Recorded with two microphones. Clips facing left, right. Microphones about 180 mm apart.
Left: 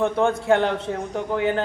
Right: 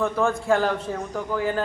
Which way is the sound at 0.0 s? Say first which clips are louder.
Left 2 dB; 20° left (ahead or behind).